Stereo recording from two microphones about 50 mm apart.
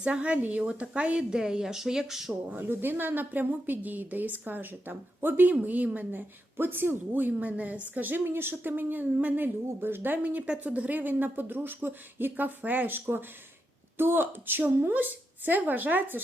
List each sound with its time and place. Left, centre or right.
0.0 s speech: right; by 2.3 s centre
2.6 s a woman's voice: right
6.1 s a woman's voice: right
10.2 s a woman's voice: right
14.0 s a woman's voice: right